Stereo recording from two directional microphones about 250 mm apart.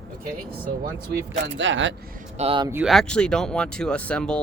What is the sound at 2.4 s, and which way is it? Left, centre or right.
Speech, right.